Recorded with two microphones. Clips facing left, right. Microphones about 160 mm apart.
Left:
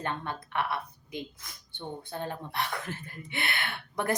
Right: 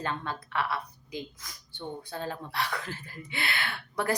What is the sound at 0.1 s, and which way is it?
Speech, 20° left (ahead or behind).